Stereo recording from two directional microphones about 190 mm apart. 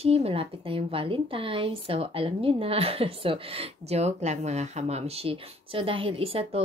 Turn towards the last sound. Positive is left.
turn(degrees=-30)  # may be behind; listen again after turning